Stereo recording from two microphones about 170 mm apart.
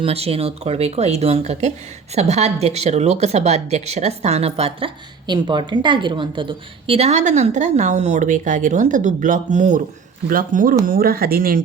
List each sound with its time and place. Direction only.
0.0 s speech: 35° right (ahead or behind); by 11.6 s 60° right (ahead or behind)